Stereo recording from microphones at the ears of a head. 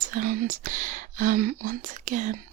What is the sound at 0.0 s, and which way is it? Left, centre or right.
Speech, right.